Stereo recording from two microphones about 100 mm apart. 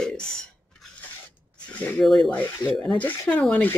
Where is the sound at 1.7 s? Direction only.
15° left (ahead or behind).